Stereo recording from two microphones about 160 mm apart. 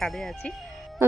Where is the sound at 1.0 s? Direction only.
15° right (ahead or behind).